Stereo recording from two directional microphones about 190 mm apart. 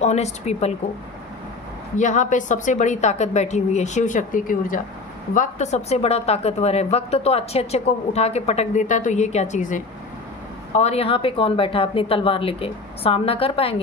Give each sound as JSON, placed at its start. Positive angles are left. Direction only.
{"t": 0.0, "sound": "a woman's voice", "side_deg": 35}
{"t": 2.0, "sound": "a woman's voice", "side_deg": 40}